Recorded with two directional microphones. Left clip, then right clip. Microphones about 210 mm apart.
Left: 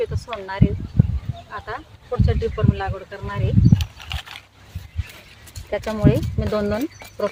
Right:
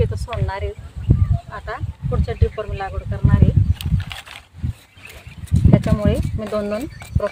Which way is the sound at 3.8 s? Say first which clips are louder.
Right 1 dB; 5° right (ahead or behind).